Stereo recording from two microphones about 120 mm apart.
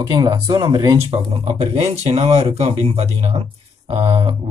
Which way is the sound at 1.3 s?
55° right (ahead or behind).